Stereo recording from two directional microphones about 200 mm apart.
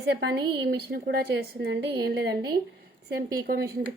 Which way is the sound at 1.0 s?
50° right (ahead or behind).